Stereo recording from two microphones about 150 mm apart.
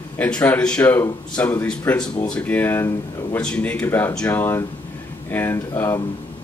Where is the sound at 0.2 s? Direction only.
10° left (ahead or behind).